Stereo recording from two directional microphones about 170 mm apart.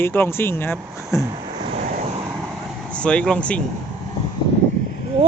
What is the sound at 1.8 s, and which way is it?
Vehicle, 55° right (ahead or behind).